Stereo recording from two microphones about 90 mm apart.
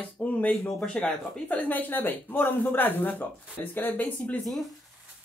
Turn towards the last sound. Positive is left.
turn(degrees=15)  # may be behind; listen again after turning